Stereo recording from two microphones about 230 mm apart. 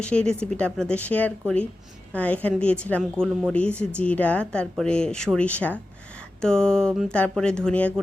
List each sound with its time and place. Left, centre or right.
0.0 s a woman's voice: centre